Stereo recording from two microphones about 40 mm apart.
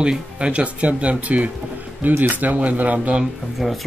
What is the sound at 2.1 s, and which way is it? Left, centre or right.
Speech, right.